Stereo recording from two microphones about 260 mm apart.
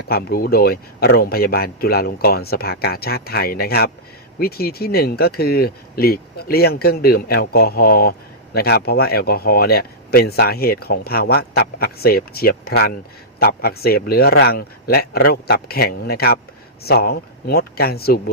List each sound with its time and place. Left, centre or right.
0.1 s speech: left